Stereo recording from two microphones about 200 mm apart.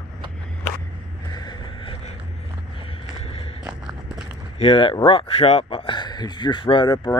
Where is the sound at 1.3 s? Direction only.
20° left (ahead or behind).